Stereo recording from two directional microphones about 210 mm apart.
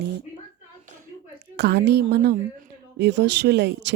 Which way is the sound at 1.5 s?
55° right (ahead or behind).